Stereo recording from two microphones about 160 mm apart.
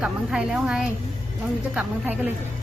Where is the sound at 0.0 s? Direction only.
5° right (ahead or behind).